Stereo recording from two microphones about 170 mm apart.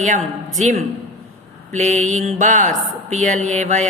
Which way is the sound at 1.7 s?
45° right (ahead or behind).